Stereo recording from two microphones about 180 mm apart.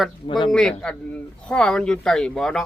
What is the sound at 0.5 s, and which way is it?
Speech, 5° left (ahead or behind).